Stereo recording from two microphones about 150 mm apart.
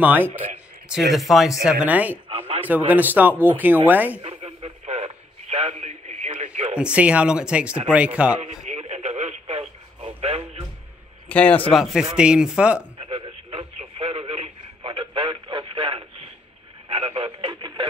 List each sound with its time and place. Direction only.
0.0 s speech: 10° right (ahead or behind)
0.9 s speech: centre (ahead or behind)
2.2 s a sound: 40° right (ahead or behind)
2.9 s speech: 10° right (ahead or behind)
4.2 s radio: 40° right (ahead or behind)
6.3 s a sound: 45° right (ahead or behind)
6.8 s speech: 10° right (ahead or behind)
8.4 s radio: 50° right (ahead or behind)
11.2 s a man's voice: 10° left (ahead or behind)
11.7 s speech: centre (ahead or behind)
13.0 s radio: 40° right (ahead or behind)